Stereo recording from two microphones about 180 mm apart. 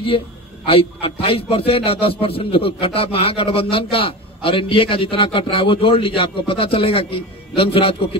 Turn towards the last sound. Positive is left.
turn(degrees=30)  # may be behind; listen again after turning